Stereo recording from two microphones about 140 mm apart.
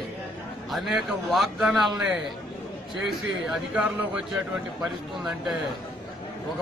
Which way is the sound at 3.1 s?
5° right (ahead or behind).